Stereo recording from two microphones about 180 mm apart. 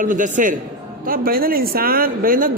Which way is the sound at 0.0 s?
45° right (ahead or behind).